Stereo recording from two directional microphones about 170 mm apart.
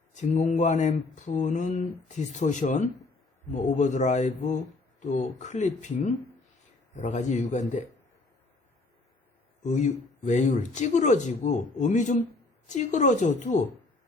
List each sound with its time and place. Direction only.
0.1 s speech: 45° left (ahead or behind)
9.6 s speech: 45° left (ahead or behind)